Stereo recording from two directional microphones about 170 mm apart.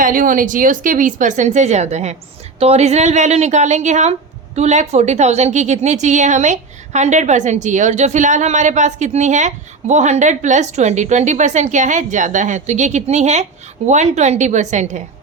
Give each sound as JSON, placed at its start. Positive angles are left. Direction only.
{"t": 0.0, "sound": "a woman's voice", "side_deg": -55}